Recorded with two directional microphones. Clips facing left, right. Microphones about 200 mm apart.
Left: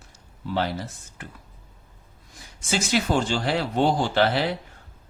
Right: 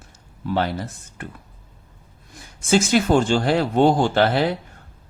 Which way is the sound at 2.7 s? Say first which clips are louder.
Right 7 dB; 50° right (ahead or behind).